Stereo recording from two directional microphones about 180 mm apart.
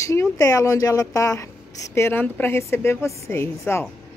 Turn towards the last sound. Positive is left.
turn(degrees=15)  # may be behind; listen again after turning